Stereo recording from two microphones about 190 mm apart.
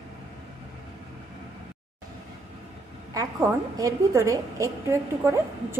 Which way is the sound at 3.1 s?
20° right (ahead or behind).